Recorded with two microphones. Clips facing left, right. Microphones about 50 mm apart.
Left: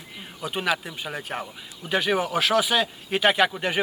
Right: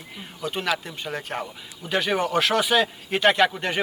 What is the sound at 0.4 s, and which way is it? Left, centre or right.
Speech, centre.